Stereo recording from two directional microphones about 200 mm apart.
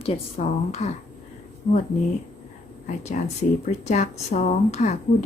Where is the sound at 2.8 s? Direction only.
35° left (ahead or behind).